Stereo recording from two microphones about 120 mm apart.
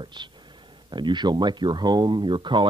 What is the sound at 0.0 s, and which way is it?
Speech, 40° right (ahead or behind).